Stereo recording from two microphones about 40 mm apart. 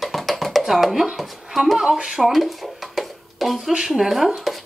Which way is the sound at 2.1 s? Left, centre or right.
Centre.